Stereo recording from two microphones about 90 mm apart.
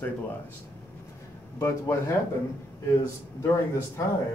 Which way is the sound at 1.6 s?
35° left (ahead or behind).